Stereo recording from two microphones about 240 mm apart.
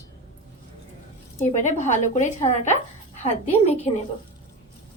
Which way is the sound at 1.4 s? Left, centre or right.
Left.